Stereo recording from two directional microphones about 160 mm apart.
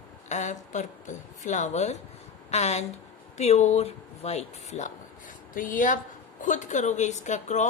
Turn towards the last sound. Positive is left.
turn(degrees=50)  # may be behind; listen again after turning